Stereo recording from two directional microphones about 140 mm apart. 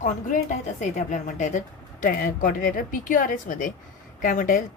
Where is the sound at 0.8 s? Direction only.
60° left (ahead or behind).